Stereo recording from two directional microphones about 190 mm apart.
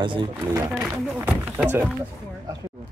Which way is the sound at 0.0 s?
25° right (ahead or behind).